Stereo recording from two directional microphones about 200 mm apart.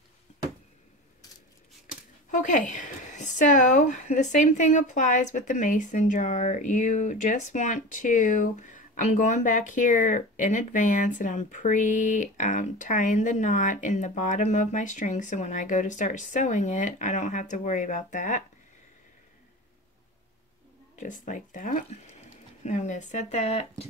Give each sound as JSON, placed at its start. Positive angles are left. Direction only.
{"t": 0.3, "sound": "a sound", "side_deg": 35}
{"t": 2.3, "sound": "speech", "side_deg": 40}
{"t": 21.0, "sound": "speech", "side_deg": 40}